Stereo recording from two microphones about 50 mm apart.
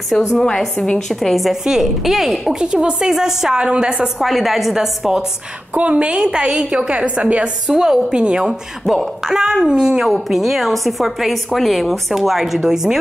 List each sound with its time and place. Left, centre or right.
0.8 s a woman's voice: centre
1.3 s a woman's voice: centre
2.6 s a woman's voice: centre
4.2 s a woman's voice: centre
5.8 s a woman's voice: right
6.3 s a woman's voice: centre
6.9 s a woman's voice: right
7.6 s a woman's voice: centre
10.0 s a woman's voice: centre